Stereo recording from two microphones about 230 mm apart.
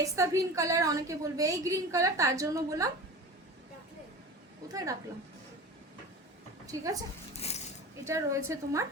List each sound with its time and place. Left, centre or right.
0.0 s a woman's voice: centre
4.7 s a woman's voice: centre
6.7 s a woman's voice: centre
7.3 s a sound: left
8.0 s a woman's voice: centre